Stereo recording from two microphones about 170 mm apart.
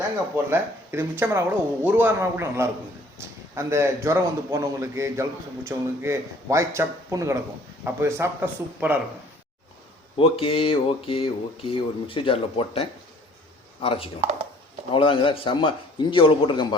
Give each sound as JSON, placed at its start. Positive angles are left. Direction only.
{"t": 0.5, "sound": "a man's voice", "side_deg": -15}
{"t": 10.2, "sound": "a man's voice", "side_deg": 35}